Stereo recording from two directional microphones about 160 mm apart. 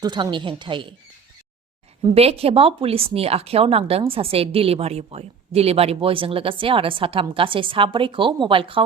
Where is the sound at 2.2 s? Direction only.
40° right (ahead or behind).